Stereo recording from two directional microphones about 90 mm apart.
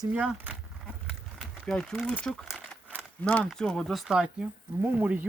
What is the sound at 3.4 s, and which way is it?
Speech, 5° left (ahead or behind).